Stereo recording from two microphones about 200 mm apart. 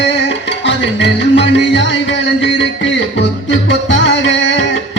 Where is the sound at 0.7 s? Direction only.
60° left (ahead or behind).